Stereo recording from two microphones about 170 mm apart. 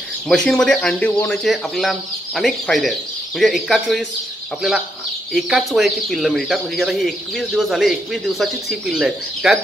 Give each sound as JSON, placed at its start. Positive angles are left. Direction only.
{"t": 0.3, "sound": "speech", "side_deg": 5}
{"t": 5.3, "sound": "speech", "side_deg": 0}